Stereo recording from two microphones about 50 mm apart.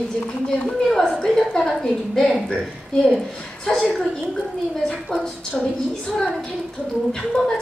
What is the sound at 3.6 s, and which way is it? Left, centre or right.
A woman's voice, centre.